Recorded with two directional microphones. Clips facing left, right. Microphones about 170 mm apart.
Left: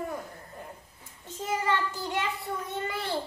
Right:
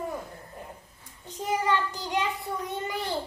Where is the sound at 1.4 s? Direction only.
15° right (ahead or behind).